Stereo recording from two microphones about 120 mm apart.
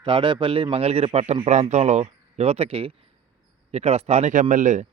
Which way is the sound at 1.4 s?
70° right (ahead or behind).